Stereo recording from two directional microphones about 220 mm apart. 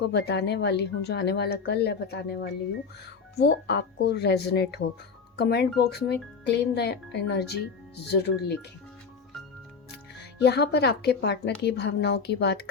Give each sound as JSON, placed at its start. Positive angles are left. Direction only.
{"t": 0.0, "sound": "a woman's voice", "side_deg": 50}
{"t": 9.9, "sound": "a woman's voice", "side_deg": 50}